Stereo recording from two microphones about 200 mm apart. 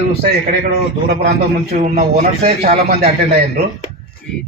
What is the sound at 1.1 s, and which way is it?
Speech, 55° right (ahead or behind).